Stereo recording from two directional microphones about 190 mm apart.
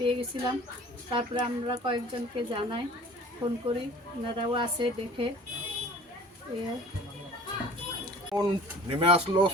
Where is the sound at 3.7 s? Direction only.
25° right (ahead or behind).